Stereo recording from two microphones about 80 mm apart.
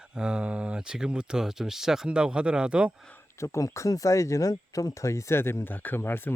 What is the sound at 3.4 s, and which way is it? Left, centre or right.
Speech, left.